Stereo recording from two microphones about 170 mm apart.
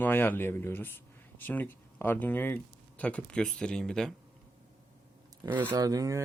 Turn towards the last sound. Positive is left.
turn(degrees=-20)  # may be behind; listen again after turning